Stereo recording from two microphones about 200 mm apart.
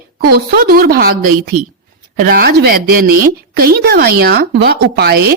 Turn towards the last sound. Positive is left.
turn(degrees=-50)  # may be behind; listen again after turning